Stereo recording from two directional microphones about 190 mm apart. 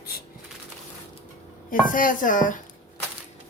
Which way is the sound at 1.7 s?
45° left (ahead or behind).